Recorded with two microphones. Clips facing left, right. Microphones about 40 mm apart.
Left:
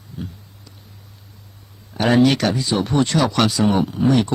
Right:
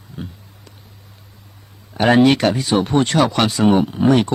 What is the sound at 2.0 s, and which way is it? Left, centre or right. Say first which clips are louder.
Speech: right 3 dB; right.